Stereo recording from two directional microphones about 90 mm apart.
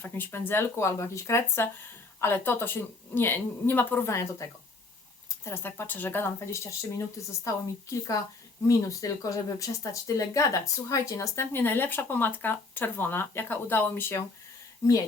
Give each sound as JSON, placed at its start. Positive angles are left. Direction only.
{"t": 0.0, "sound": "speech", "side_deg": 20}
{"t": 5.5, "sound": "speech", "side_deg": 25}